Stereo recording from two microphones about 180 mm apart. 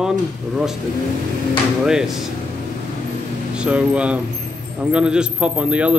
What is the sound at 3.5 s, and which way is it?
A man's voice, 5° right (ahead or behind).